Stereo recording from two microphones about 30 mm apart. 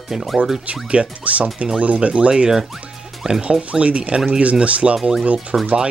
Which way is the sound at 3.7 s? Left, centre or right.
Right.